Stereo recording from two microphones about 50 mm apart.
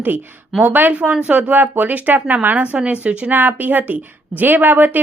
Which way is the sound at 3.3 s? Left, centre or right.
Right.